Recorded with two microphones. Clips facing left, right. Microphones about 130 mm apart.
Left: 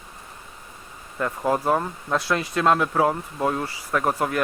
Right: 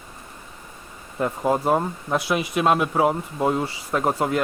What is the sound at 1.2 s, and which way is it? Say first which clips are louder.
Speech: right 2 dB; 20° right (ahead or behind).